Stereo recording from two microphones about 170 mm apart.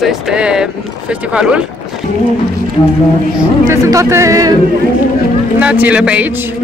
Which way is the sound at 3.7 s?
15° right (ahead or behind).